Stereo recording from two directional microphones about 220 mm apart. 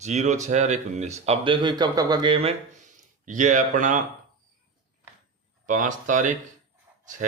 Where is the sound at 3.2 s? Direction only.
35° right (ahead or behind).